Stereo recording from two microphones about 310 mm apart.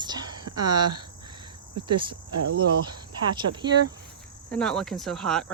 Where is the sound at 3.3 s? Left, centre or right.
Centre.